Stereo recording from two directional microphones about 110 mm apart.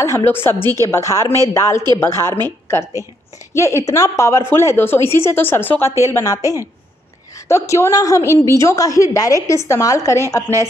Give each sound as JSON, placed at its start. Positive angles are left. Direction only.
{"t": 0.0, "sound": "a woman's voice", "side_deg": 20}